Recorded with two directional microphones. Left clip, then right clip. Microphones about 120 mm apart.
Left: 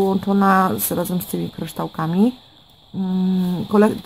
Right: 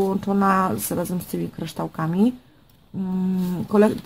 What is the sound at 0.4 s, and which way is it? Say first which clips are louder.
Speech: left 4 dB; 40° left (ahead or behind).